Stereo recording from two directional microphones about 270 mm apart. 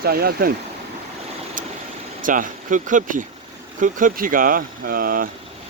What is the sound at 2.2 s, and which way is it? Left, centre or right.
Speech, right.